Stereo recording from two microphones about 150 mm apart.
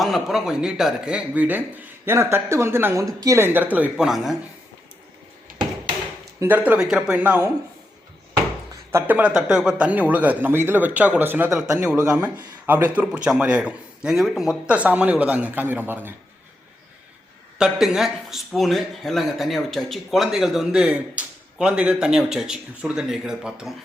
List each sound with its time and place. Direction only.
0.0 s a man's voice: centre (ahead or behind)
6.4 s speech: 10° right (ahead or behind)
8.7 s speech: 20° right (ahead or behind)
17.6 s a man's voice: centre (ahead or behind)